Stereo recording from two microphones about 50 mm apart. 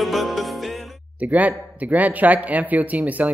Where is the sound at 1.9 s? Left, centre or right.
Right.